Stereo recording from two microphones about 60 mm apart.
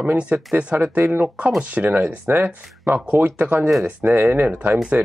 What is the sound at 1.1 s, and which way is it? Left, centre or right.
Speech, right.